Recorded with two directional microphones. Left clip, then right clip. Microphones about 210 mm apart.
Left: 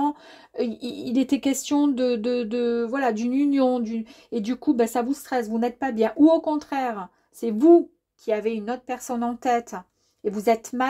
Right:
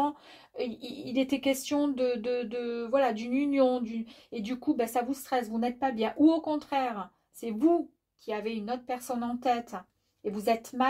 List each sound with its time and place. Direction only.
0.6 s speech: 45° left (ahead or behind)